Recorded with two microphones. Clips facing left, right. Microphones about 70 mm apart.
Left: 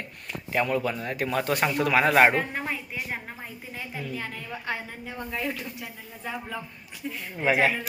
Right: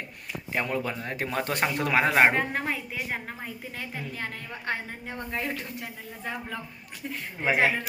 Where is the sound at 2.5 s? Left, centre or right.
Right.